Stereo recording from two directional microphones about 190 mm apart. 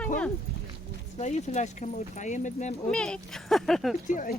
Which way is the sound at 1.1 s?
35° left (ahead or behind).